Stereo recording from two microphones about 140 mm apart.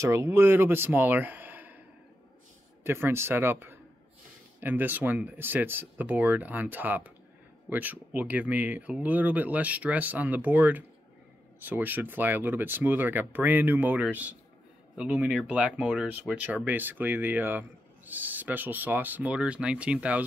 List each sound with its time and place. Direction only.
0.0 s speech: 20° right (ahead or behind)
2.8 s speech: 15° right (ahead or behind)